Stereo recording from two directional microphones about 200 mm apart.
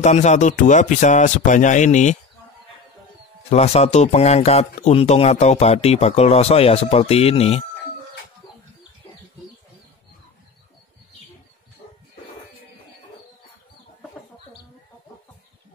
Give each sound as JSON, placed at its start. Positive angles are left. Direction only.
{"t": 0.0, "sound": "speech", "side_deg": 35}
{"t": 3.4, "sound": "speech", "side_deg": 35}
{"t": 11.8, "sound": "a sound", "side_deg": 45}